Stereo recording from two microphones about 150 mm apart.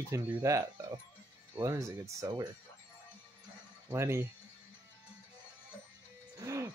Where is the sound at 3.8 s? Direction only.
15° right (ahead or behind).